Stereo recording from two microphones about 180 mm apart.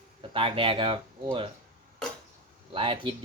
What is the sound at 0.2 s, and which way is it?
Speech, 30° right (ahead or behind).